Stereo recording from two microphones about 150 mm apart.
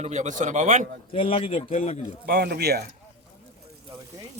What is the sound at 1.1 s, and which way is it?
Speech, 40° left (ahead or behind).